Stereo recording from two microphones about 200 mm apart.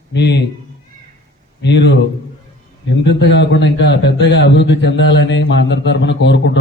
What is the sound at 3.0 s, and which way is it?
A man's voice, 60° left (ahead or behind).